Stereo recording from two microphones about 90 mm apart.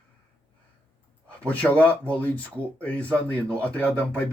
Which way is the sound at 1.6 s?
15° left (ahead or behind).